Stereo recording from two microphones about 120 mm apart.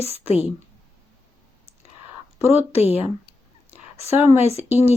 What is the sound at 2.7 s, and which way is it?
Speech, 60° left (ahead or behind).